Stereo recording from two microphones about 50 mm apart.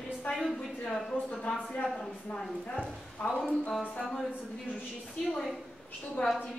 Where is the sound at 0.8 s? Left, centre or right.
Centre.